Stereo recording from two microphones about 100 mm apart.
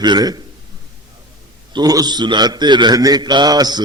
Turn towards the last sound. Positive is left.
turn(degrees=-40)  # may be behind; listen again after turning